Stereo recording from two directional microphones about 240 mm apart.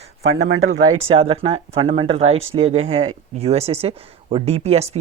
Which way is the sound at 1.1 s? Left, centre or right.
Right.